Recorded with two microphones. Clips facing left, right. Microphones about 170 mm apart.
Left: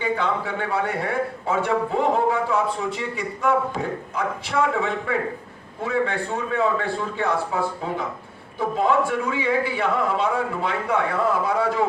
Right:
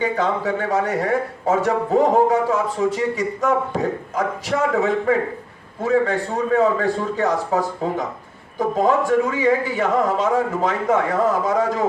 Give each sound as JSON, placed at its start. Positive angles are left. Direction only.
{"t": 0.0, "sound": "a man's voice", "side_deg": -40}